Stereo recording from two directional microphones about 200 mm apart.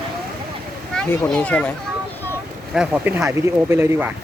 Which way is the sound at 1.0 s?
5° left (ahead or behind).